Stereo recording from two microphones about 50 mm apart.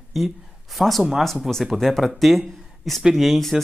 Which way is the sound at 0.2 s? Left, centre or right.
Centre.